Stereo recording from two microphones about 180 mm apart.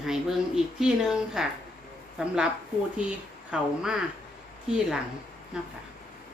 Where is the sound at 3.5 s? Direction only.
5° right (ahead or behind).